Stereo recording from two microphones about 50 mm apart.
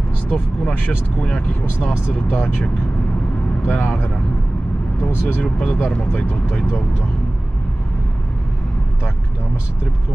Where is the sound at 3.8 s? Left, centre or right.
Left.